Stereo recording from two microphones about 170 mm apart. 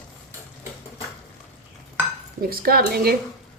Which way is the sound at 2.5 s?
60° right (ahead or behind).